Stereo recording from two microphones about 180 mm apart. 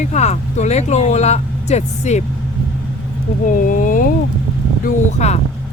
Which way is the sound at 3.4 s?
45° left (ahead or behind).